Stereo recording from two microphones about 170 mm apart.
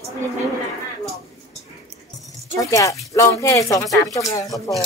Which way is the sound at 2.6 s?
20° left (ahead or behind).